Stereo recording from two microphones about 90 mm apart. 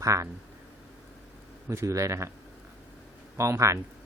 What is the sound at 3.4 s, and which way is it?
Speech, 35° right (ahead or behind).